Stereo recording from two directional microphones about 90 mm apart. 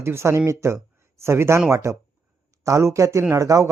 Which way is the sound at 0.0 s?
30° right (ahead or behind).